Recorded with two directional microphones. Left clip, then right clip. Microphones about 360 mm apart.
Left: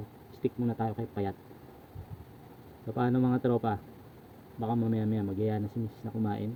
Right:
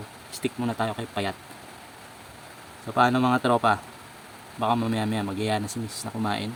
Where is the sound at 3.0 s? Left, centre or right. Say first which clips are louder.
Right 9 dB; centre.